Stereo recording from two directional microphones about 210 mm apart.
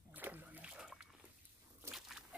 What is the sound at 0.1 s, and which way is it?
Splash, 10° right (ahead or behind).